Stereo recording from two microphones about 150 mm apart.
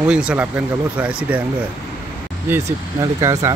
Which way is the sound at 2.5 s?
15° right (ahead or behind).